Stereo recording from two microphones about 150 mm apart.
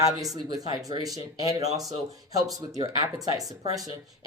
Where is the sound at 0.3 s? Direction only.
25° right (ahead or behind).